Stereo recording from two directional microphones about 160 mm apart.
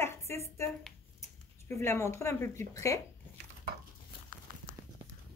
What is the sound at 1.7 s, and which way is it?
A woman's voice, 15° left (ahead or behind).